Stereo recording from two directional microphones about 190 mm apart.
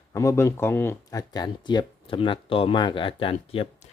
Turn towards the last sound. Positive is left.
turn(degrees=30)  # may be behind; listen again after turning